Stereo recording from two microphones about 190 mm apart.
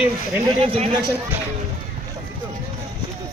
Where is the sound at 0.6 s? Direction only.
30° right (ahead or behind).